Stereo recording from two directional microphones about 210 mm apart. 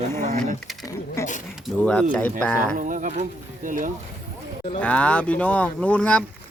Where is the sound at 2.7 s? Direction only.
40° right (ahead or behind).